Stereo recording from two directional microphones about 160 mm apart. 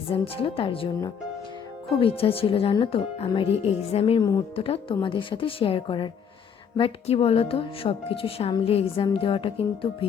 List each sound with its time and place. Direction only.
0.1 s speech: 35° left (ahead or behind)
4.2 s a woman's voice: 25° left (ahead or behind)
4.5 s speech: 35° left (ahead or behind)